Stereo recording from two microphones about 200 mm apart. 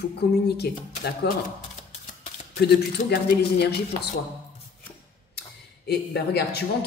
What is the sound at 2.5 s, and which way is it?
Speech, 55° left (ahead or behind).